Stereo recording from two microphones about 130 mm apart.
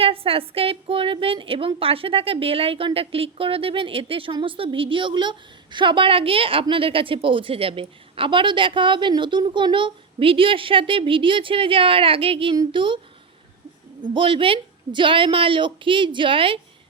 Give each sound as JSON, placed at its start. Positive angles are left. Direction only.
{"t": 0.0, "sound": "a woman's voice", "side_deg": -45}
{"t": 14.1, "sound": "speech", "side_deg": -40}